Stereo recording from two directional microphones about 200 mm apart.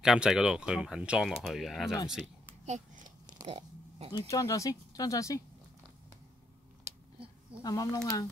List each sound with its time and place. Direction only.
0.0 s speech: 5° right (ahead or behind)
3.4 s a sound: 30° right (ahead or behind)
4.1 s speech: 15° left (ahead or behind)
7.6 s speech: 20° left (ahead or behind)